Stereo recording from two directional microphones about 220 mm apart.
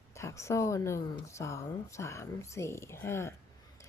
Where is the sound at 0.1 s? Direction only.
15° left (ahead or behind).